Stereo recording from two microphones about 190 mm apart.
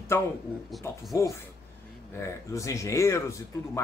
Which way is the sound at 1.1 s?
15° left (ahead or behind).